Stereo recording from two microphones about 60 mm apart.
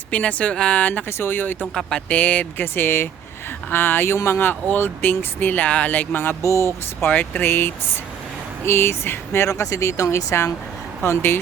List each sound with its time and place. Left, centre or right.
0.1 s speech: left
1.2 s speech: left
2.7 s speech: left
6.4 s speech: left
7.1 s speech: left
9.5 s speech: left
11.0 s speech: left